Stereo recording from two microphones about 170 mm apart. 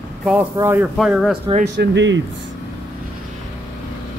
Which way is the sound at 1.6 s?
80° right.